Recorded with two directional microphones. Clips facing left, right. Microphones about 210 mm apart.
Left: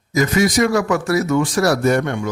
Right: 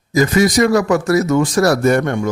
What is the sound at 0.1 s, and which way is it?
A man's voice, 35° right (ahead or behind).